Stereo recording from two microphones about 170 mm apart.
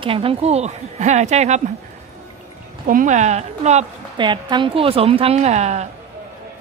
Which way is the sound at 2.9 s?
50° right (ahead or behind).